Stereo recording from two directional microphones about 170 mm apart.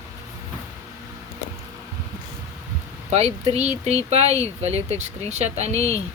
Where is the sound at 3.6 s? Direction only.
40° right (ahead or behind).